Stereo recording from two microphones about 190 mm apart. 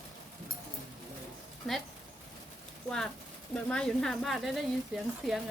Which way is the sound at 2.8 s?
5° left (ahead or behind).